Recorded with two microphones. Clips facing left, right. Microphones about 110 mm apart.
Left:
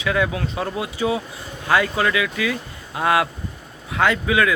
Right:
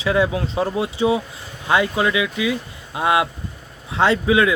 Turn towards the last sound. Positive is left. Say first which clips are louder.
# right 2 dB
turn(degrees=-25)  # may be behind; listen again after turning